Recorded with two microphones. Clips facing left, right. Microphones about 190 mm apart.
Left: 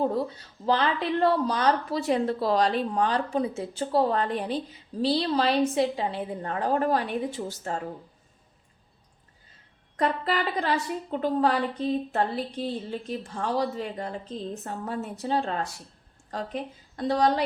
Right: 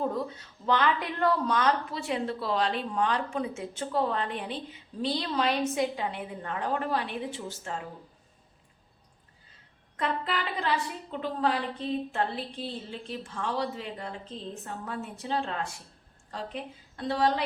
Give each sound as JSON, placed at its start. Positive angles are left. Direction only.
{"t": 0.0, "sound": "speech", "side_deg": 35}
{"t": 10.0, "sound": "speech", "side_deg": 40}